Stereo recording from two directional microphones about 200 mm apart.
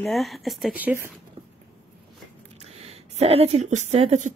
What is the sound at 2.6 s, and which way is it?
A woman's voice, 30° right (ahead or behind).